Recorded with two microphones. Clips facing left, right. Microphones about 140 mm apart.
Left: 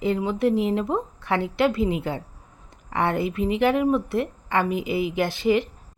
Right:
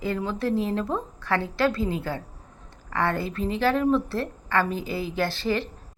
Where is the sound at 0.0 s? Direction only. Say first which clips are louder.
Left 5 dB; 20° left (ahead or behind).